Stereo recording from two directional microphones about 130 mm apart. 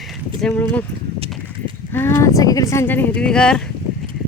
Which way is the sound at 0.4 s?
10° left (ahead or behind).